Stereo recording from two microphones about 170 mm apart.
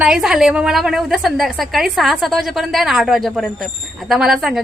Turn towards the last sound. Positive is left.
turn(degrees=0)  # may be behind; listen again after turning